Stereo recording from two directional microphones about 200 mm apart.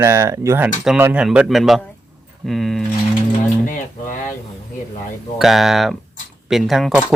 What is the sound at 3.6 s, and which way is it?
Speech, 40° left (ahead or behind).